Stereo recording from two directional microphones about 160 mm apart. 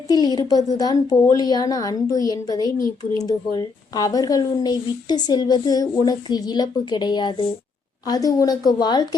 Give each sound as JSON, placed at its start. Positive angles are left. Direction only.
{"t": 0.1, "sound": "speech", "side_deg": 25}